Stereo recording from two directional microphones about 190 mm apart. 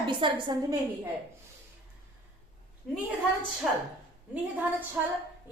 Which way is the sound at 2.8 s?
Centre (ahead or behind).